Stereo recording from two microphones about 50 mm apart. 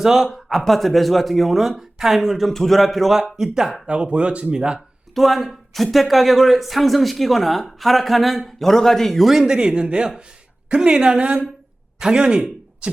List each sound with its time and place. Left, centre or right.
0.0 s speech: centre
0.3 s a sound: centre
0.6 s speech: centre
2.5 s speech: centre
3.8 s speech: right
5.1 s a man's voice: centre; by 12.9 s right